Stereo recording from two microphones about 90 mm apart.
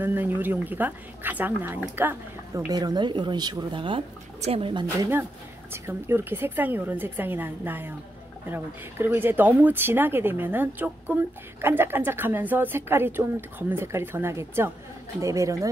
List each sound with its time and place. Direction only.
0.0 s speech: 20° right (ahead or behind)
2.5 s speech: 45° right (ahead or behind); by 4.0 s 65° right (ahead or behind)
4.5 s speech: 80° right
5.7 s speech: 25° right (ahead or behind)